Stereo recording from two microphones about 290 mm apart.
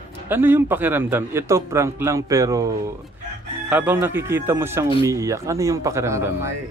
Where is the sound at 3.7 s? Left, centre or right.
Centre.